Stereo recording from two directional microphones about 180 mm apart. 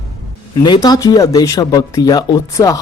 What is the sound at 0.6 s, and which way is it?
Speech, 25° left (ahead or behind).